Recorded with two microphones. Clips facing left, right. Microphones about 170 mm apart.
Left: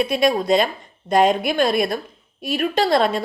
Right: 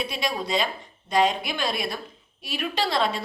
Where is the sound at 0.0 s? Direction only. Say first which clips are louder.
Left 10 dB; 50° left (ahead or behind).